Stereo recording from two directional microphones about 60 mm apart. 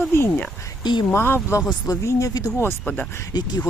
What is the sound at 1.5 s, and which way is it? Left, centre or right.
Speech, left.